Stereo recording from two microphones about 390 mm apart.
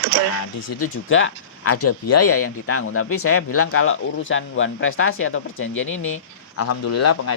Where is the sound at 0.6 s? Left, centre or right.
Left.